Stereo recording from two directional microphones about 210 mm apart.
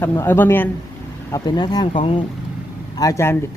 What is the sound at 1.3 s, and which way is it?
Speech, 20° left (ahead or behind).